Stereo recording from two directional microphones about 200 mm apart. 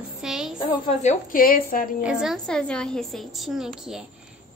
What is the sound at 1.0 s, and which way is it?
Speech, 40° left (ahead or behind).